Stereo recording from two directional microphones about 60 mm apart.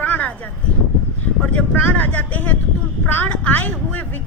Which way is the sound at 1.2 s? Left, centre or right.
Left.